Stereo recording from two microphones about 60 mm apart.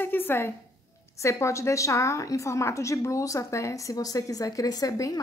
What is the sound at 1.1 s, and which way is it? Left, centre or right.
A woman's voice, left.